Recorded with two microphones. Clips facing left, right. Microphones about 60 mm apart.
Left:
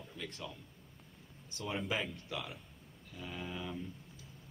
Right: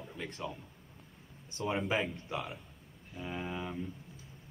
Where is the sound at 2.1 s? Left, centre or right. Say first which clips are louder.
Right 4 dB; right.